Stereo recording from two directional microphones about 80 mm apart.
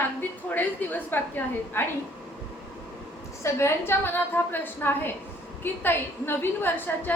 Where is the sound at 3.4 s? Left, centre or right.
Left.